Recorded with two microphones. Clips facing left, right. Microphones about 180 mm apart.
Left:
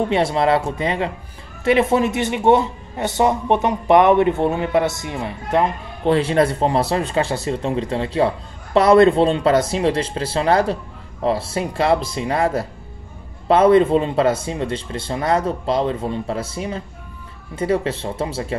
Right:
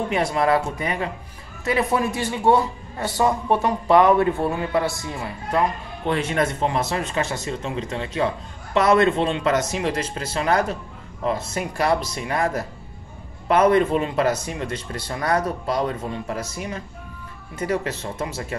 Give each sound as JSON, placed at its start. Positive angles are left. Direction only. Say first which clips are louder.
{"t": 0.1, "sound": "speech", "louder": "even", "side_deg": 25}